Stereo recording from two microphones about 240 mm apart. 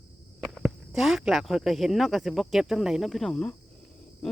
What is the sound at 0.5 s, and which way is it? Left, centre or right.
Speech, centre.